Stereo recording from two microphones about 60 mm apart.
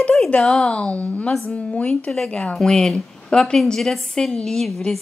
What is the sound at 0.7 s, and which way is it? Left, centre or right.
A woman's voice, centre.